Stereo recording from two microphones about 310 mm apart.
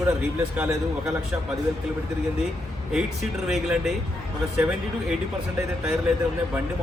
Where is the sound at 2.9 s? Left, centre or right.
Centre.